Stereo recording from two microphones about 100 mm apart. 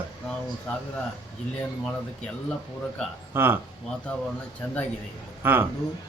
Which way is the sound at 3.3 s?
20° right (ahead or behind).